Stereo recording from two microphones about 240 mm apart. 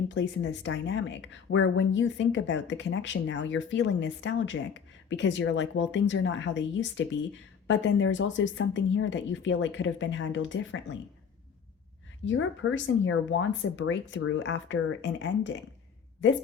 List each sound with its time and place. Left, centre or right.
0.1 s speech: left
12.2 s speech: left